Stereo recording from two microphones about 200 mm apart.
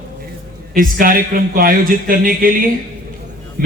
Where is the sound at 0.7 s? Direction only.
45° right (ahead or behind).